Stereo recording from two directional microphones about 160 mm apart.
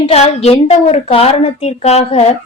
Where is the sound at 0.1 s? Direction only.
40° left (ahead or behind).